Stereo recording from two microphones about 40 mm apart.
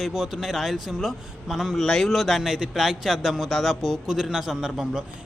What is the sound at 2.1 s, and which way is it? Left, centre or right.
Speech, centre.